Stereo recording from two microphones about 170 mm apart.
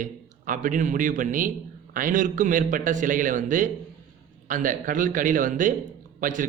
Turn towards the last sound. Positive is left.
turn(degrees=-50)  # may be behind; listen again after turning